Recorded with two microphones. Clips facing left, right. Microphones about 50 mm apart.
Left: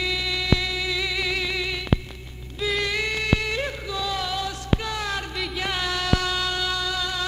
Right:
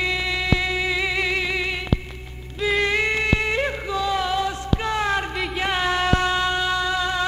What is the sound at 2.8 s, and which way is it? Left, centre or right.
Music, right.